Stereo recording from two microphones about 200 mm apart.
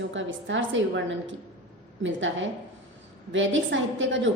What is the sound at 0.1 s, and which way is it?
Speech, 70° right (ahead or behind).